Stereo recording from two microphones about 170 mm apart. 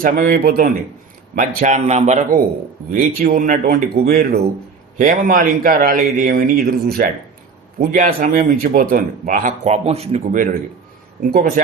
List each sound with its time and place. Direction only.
0.0 s a man's voice: 60° right (ahead or behind)
2.9 s a man's voice: 55° right (ahead or behind); by 10.4 s 40° right (ahead or behind)
11.2 s a man's voice: 60° right (ahead or behind)